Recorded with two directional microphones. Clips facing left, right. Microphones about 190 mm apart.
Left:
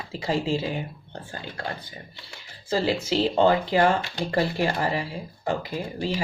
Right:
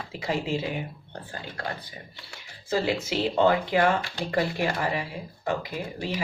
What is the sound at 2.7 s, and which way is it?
Speech, 35° left (ahead or behind).